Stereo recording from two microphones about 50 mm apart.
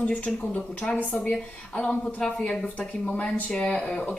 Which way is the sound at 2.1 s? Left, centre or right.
Centre.